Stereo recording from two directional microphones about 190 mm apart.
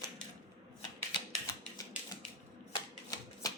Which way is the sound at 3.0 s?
20° left (ahead or behind).